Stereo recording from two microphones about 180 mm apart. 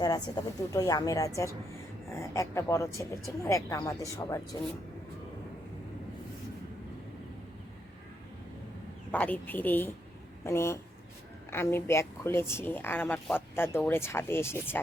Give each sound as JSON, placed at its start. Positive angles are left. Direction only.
{"t": 0.0, "sound": "a woman's voice", "side_deg": 20}
{"t": 9.1, "sound": "a woman's voice", "side_deg": 10}